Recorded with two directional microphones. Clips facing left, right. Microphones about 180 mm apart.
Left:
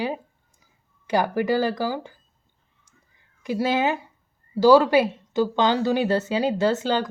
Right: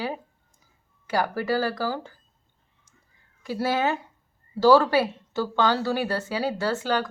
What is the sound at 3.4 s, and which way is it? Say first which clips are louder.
A woman's voice: left 2 dB; 15° left (ahead or behind).